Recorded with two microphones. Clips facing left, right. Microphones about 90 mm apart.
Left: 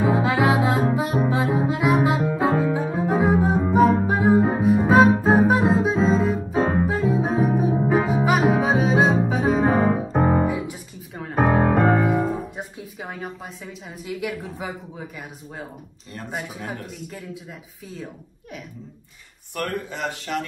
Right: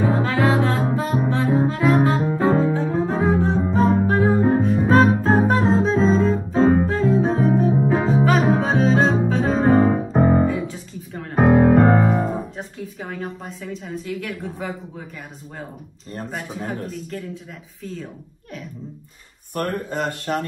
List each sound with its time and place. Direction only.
0.1 s music: 5° left (ahead or behind)
11.6 s music: centre (ahead or behind)
12.1 s music: 10° left (ahead or behind)
16.3 s speech: 5° left (ahead or behind)
19.5 s speech: 45° right (ahead or behind)